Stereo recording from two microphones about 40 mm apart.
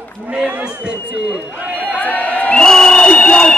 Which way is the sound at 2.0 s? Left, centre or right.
Left.